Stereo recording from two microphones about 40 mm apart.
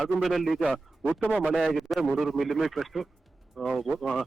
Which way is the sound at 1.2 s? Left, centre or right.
Right.